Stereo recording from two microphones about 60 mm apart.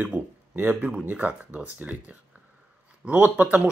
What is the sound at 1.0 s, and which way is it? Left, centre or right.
Speech, right.